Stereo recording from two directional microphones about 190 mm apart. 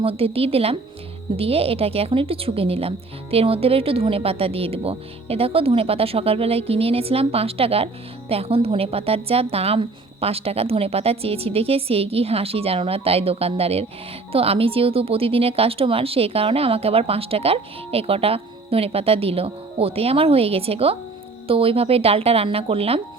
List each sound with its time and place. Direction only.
0.0 s speech: 30° right (ahead or behind)